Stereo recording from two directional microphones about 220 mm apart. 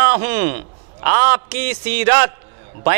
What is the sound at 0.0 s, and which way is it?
A man's voice, 15° right (ahead or behind).